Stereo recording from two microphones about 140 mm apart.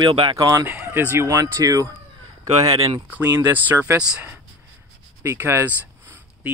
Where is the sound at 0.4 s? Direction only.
25° right (ahead or behind).